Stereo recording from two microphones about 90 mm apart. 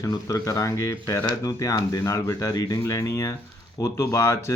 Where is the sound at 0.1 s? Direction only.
45° left (ahead or behind).